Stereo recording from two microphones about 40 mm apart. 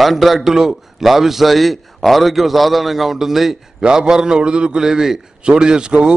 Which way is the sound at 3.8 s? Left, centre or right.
Centre.